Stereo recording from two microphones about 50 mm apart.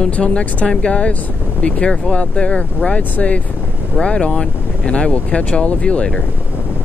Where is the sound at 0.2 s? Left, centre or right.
Left.